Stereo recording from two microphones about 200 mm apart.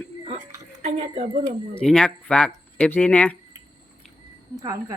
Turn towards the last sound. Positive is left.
turn(degrees=-20)  # may be behind; listen again after turning